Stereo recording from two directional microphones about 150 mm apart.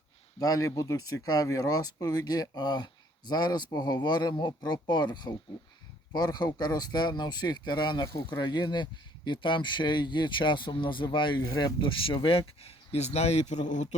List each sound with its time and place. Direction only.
0.3 s speech: 25° left (ahead or behind); by 13.8 s 50° left (ahead or behind)